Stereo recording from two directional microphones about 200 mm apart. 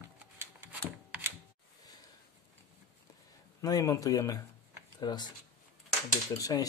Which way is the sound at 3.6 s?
15° left (ahead or behind).